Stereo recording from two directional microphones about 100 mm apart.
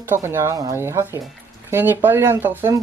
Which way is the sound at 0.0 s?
25° right (ahead or behind).